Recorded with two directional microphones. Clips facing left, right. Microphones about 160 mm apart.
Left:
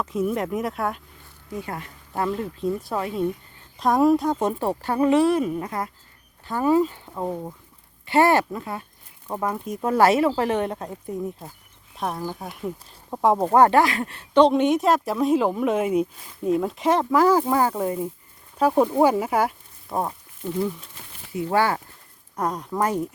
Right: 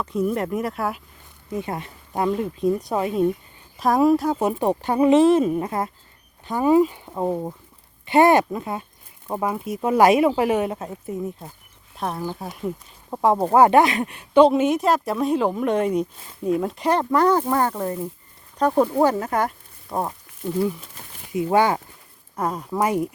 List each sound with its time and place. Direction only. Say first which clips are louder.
0.0 s speech: right 1 dB; 5° left (ahead or behind)
1.5 s speech: right 4 dB; 20° right (ahead or behind)
3.8 s speech: right 1 dB; centre (ahead or behind)
13.7 s speech: right 3 dB; 20° right (ahead or behind); by 20.1 s centre (ahead or behind)
21.3 s speech: right 3 dB; 20° right (ahead or behind)
22.4 s speech: right 1 dB; 5° right (ahead or behind)